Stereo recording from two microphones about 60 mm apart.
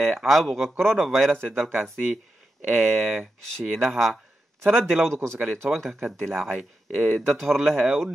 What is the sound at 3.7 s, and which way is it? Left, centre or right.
Speech, centre.